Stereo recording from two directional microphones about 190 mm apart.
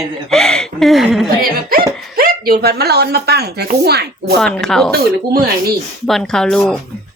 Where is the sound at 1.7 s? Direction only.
50° right (ahead or behind).